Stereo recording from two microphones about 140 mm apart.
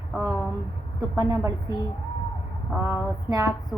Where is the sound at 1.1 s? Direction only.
20° right (ahead or behind).